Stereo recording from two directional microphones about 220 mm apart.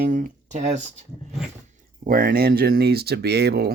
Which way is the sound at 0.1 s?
35° right (ahead or behind).